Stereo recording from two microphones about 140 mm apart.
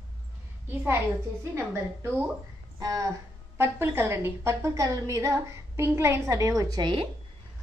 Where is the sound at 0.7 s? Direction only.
15° right (ahead or behind).